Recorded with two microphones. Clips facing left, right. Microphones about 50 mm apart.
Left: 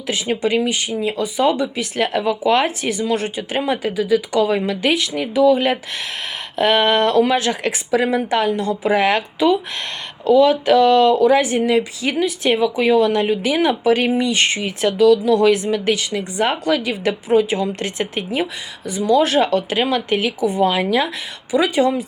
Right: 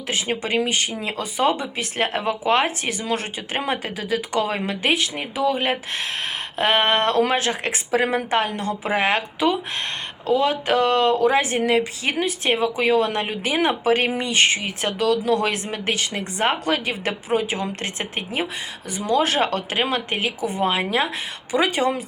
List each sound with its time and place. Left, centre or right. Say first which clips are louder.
0.1 s speech: left 4 dB; right
1.4 s speech: left 3 dB; right
11.6 s speech: left 3 dB; right
12.2 s speech: left 4 dB; right
12.7 s speech: left 4 dB; right
13.0 s speech: left 6 dB; right